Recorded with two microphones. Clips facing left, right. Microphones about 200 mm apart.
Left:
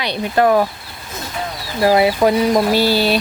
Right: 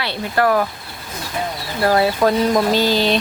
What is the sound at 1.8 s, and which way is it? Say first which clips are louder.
Speech: left 2 dB; 15° left (ahead or behind).